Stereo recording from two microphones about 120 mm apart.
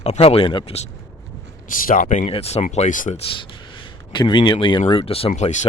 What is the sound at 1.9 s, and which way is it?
Speech, 90° left.